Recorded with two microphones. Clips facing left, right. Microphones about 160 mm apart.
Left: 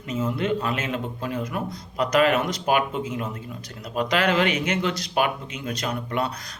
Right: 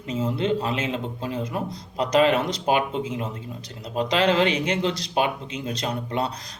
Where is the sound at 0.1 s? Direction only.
30° right (ahead or behind).